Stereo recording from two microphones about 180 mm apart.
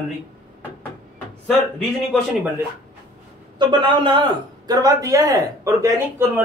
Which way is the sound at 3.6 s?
25° right (ahead or behind).